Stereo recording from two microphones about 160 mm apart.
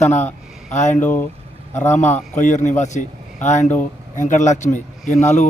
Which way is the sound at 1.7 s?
45° left (ahead or behind).